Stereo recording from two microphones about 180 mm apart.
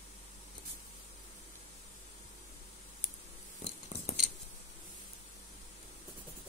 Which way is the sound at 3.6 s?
40° left (ahead or behind).